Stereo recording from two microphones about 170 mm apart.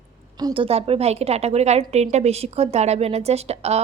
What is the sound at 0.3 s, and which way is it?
A woman's voice, 25° right (ahead or behind).